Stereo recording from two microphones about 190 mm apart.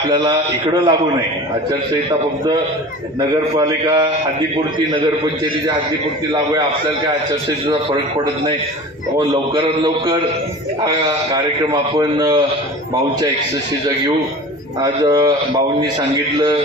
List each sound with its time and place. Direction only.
0.1 s a man's voice: 25° right (ahead or behind)
2.0 s a man's voice: 25° right (ahead or behind)
9.2 s a man's voice: 20° right (ahead or behind)
11.9 s a man's voice: 20° right (ahead or behind)
14.9 s a man's voice: 20° right (ahead or behind)